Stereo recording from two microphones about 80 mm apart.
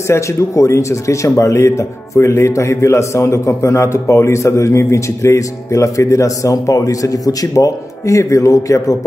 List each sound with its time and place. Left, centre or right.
0.1 s a man's voice: left